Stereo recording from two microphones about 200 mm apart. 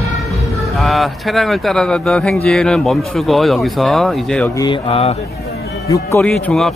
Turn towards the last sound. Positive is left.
turn(degrees=0)  # may be behind; listen again after turning